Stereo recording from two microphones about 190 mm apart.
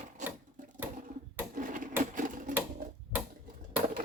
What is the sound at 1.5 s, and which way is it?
Sewing machine, 45° right (ahead or behind).